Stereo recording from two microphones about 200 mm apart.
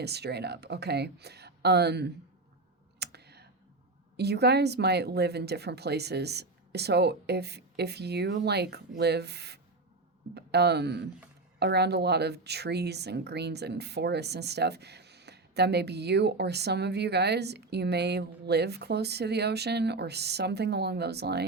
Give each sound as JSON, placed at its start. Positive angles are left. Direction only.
{"t": 0.0, "sound": "speech", "side_deg": -55}
{"t": 3.0, "sound": "clicking", "side_deg": -55}
{"t": 4.2, "sound": "speech", "side_deg": -55}